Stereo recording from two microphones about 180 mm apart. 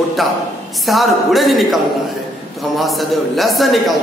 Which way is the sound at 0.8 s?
Centre (ahead or behind).